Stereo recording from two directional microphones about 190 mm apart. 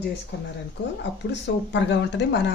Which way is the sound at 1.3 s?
70° left (ahead or behind).